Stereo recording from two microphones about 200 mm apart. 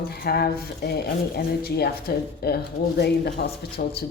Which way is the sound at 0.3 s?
50° left (ahead or behind).